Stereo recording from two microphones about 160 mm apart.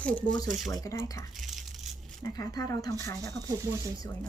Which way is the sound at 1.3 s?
Centre (ahead or behind).